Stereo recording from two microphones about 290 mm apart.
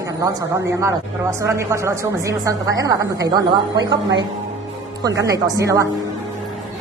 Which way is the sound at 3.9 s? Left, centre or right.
Right.